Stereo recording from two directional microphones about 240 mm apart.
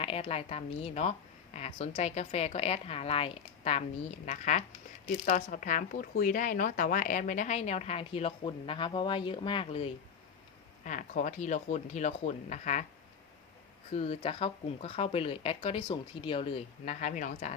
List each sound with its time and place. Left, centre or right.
0.0 s speech: left
13.9 s speech: left